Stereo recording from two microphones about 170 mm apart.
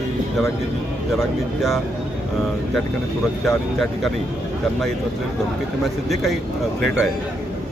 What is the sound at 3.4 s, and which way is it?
Speech, centre (ahead or behind).